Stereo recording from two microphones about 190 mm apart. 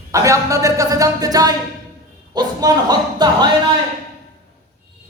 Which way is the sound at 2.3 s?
20° right (ahead or behind).